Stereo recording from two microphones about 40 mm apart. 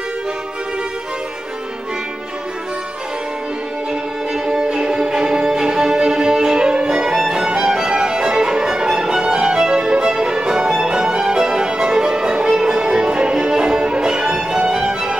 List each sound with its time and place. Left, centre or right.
4.6 s music: centre
7.1 s music: centre
7.3 s violin: centre
10.8 s music: centre